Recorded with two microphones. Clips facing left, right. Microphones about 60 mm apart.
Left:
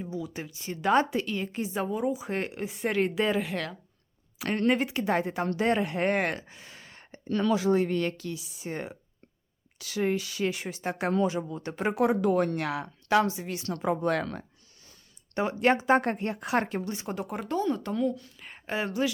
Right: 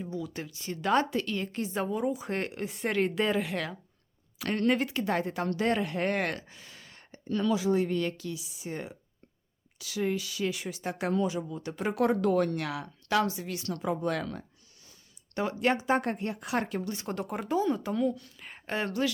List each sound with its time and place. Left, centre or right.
0.0 s a woman's voice: centre
4.4 s a woman's voice: left
7.3 s speech: left
11.9 s speech: centre
12.5 s speech: left
15.6 s speech: left
17.1 s a woman's voice: centre